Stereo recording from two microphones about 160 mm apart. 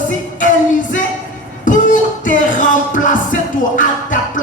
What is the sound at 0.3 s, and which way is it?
Music, 55° left (ahead or behind).